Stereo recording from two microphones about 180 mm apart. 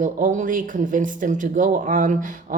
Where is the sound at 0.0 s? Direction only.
45° right (ahead or behind).